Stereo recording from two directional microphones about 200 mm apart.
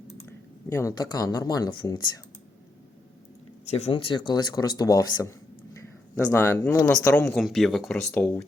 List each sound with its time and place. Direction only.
0.7 s speech: 15° left (ahead or behind)
3.7 s speech: 30° left (ahead or behind); by 8.4 s 10° left (ahead or behind)